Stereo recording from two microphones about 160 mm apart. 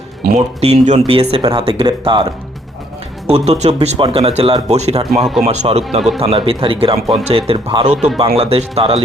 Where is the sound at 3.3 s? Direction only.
45° right (ahead or behind).